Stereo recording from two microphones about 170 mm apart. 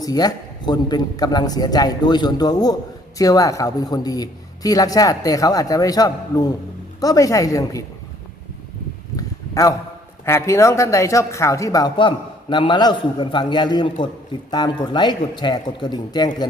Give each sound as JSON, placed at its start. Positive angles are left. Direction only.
{"t": 0.0, "sound": "speech", "side_deg": 20}
{"t": 9.1, "sound": "a sound", "side_deg": 20}
{"t": 10.2, "sound": "speech", "side_deg": 15}